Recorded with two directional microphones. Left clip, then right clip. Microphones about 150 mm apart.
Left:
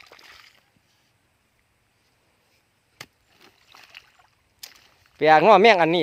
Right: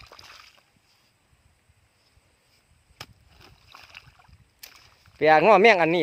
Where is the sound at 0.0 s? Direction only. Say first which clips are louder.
Even; 5° right (ahead or behind).